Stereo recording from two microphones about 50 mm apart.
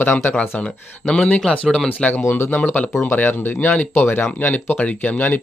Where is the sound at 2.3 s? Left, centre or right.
Left.